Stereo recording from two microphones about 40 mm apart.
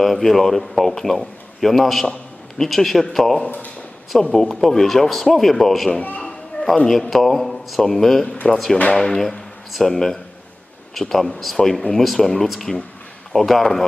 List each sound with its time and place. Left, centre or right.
0.0 s a man's voice: centre
6.0 s speech: left
6.6 s a sound: left
6.9 s a man's voice: centre